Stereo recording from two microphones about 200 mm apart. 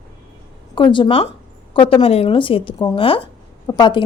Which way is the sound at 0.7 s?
25° left (ahead or behind).